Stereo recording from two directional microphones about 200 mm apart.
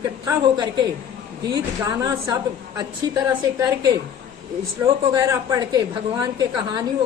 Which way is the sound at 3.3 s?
15° right (ahead or behind).